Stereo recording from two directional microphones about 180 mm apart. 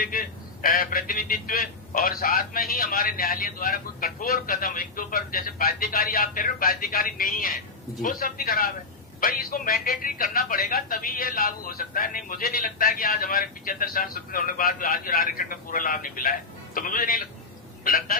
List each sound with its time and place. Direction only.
0.0 s a man's voice: 50° left (ahead or behind)